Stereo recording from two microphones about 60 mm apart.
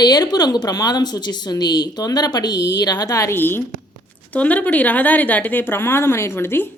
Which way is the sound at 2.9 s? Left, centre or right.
Left.